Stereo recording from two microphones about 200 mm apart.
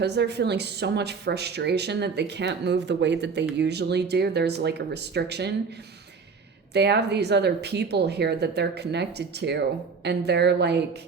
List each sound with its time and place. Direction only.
0.0 s speech: 55° right (ahead or behind)
6.7 s speech: 55° right (ahead or behind)